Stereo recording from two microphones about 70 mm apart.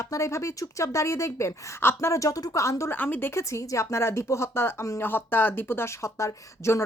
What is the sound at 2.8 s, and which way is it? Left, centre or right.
Speech, left.